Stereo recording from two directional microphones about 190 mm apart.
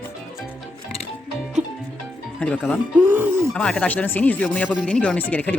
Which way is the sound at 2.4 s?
10° left (ahead or behind).